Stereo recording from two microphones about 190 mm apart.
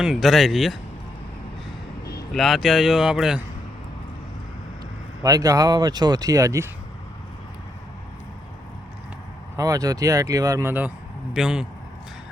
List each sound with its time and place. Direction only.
0.0 s speech: centre (ahead or behind)
2.3 s speech: centre (ahead or behind)
5.2 s speech: 20° right (ahead or behind)
9.6 s speech: 20° right (ahead or behind); by 11.6 s 5° right (ahead or behind)